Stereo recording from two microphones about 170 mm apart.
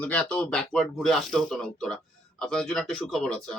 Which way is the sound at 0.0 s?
5° left (ahead or behind).